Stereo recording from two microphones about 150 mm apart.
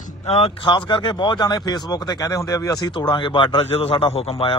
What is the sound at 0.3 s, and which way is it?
Speech, 45° left (ahead or behind).